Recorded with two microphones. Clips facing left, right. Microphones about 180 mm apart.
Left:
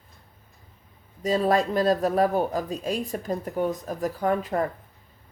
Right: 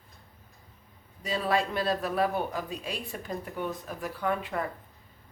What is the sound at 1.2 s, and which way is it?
Speech, 40° left (ahead or behind).